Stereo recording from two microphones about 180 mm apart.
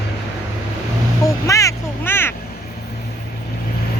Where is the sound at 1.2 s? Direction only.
20° left (ahead or behind).